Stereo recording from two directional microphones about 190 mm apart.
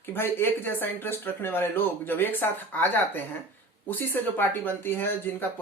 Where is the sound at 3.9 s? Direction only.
10° left (ahead or behind).